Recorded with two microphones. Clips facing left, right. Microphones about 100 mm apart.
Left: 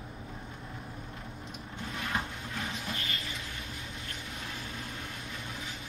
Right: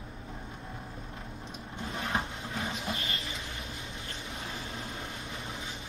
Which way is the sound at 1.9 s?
30° right (ahead or behind).